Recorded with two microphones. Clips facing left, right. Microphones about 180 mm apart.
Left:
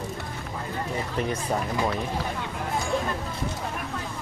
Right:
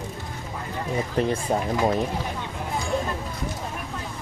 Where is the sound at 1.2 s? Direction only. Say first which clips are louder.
Right 4 dB; 30° right (ahead or behind).